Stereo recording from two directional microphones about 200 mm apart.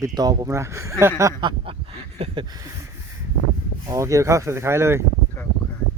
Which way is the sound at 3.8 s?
15° right (ahead or behind).